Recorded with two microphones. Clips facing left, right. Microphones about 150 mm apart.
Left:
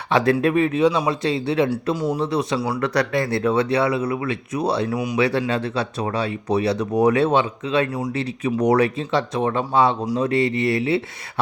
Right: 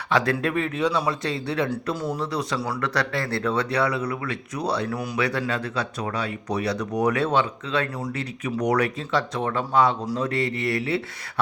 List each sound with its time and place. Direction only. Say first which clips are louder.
0.1 s speech: left 5 dB; 25° left (ahead or behind)
4.9 s speech: left 5 dB; 15° left (ahead or behind)
5.2 s speech: left 5 dB; 25° left (ahead or behind)
8.1 s speech: left 5 dB; 30° left (ahead or behind)